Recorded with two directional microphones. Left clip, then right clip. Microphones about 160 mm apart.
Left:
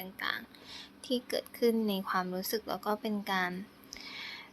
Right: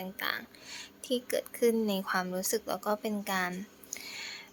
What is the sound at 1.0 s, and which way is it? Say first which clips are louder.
Speech: right 2 dB; centre (ahead or behind).